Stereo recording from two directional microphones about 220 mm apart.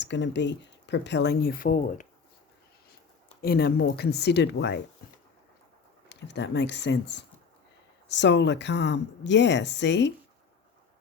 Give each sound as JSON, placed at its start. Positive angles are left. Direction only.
{"t": 0.0, "sound": "speech", "side_deg": 55}
{"t": 3.4, "sound": "speech", "side_deg": 45}
{"t": 6.1, "sound": "speech", "side_deg": 55}